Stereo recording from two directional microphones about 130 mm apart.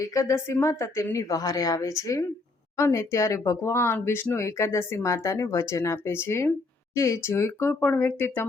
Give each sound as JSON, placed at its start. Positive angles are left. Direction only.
{"t": 0.0, "sound": "speech", "side_deg": 25}